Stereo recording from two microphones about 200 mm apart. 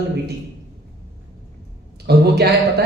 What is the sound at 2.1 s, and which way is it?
Speech, 55° right (ahead or behind).